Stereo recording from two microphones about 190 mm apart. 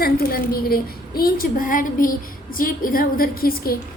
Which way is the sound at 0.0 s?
50° left (ahead or behind).